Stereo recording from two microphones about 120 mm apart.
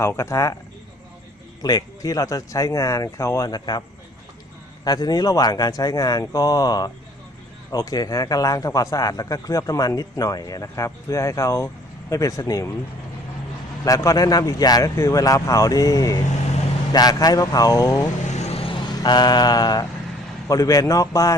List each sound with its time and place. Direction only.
0.0 s speech: 20° left (ahead or behind)
1.6 s speech: 30° left (ahead or behind)
13.8 s speech: 30° left (ahead or behind)
18.3 s vehicle: 65° left (ahead or behind); by 19.9 s 35° left (ahead or behind)
20.5 s speech: 30° left (ahead or behind)